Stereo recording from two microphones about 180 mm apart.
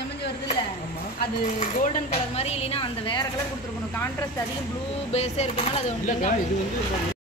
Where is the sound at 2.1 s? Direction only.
35° left (ahead or behind).